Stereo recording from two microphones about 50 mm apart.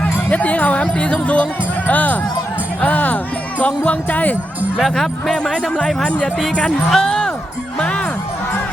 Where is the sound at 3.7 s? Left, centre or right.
Left.